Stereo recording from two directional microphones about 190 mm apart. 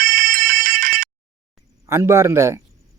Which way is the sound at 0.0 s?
50° right (ahead or behind).